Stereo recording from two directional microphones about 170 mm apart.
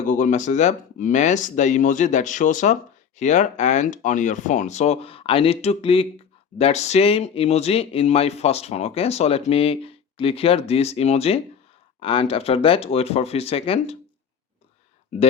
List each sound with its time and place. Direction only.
0.0 s speech: 45° left (ahead or behind)